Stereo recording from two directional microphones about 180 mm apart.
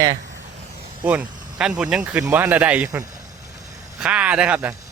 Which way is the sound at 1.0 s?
10° right (ahead or behind).